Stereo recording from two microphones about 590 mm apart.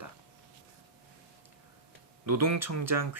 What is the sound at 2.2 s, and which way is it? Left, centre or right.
Speech, right.